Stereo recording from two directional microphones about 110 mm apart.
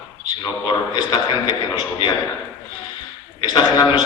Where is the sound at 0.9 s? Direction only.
40° left (ahead or behind).